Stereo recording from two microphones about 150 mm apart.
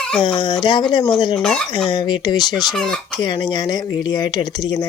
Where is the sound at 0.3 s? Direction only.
35° left (ahead or behind).